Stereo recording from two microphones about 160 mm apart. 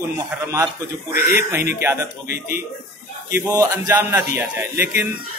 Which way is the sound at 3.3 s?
20° right (ahead or behind).